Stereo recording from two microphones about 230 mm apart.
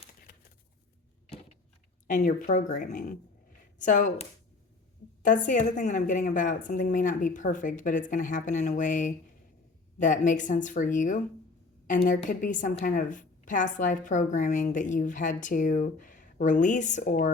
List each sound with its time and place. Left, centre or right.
2.0 s a woman's voice: left